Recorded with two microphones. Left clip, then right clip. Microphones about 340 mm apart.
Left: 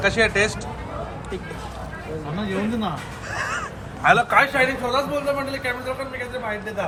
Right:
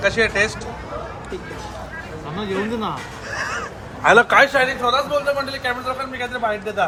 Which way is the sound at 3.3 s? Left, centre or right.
Centre.